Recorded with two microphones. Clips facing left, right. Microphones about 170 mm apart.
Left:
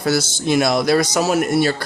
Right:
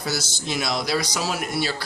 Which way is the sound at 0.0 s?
55° left (ahead or behind).